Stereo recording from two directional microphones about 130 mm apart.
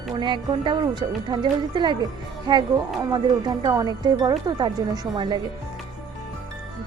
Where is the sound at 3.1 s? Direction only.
35° right (ahead or behind).